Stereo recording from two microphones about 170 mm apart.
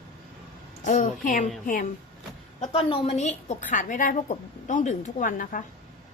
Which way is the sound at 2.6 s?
35° left (ahead or behind).